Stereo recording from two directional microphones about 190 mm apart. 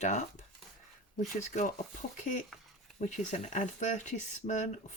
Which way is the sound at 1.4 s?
40° left (ahead or behind).